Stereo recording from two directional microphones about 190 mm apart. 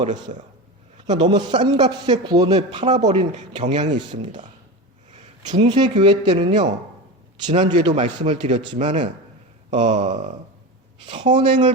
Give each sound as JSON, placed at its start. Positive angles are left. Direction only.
{"t": 0.3, "sound": "speech", "side_deg": -35}
{"t": 1.0, "sound": "speech", "side_deg": -25}
{"t": 5.5, "sound": "speech", "side_deg": -25}
{"t": 7.4, "sound": "speech", "side_deg": -40}
{"t": 7.8, "sound": "speech", "side_deg": -25}
{"t": 8.8, "sound": "speech", "side_deg": -40}
{"t": 11.0, "sound": "speech", "side_deg": -25}